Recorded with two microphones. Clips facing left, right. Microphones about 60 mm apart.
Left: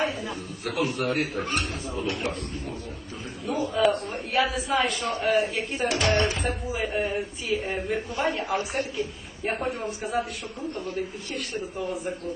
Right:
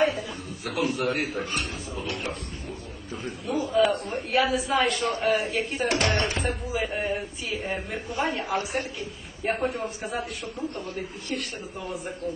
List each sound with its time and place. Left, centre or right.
0.6 s a man's voice: centre
3.4 s a man's voice: centre
5.9 s speech: right
6.3 s a man's voice: centre
11.3 s a man's voice: centre